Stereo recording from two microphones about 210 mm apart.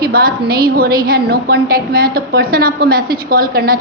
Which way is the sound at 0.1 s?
45° right (ahead or behind).